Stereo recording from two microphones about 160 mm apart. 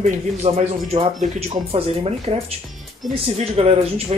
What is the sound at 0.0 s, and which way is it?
Speech, 40° right (ahead or behind).